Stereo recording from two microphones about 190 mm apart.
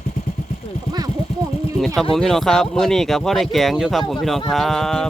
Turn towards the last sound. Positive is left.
turn(degrees=0)  # may be behind; listen again after turning